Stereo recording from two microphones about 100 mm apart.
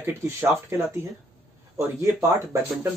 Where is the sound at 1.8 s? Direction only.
30° right (ahead or behind).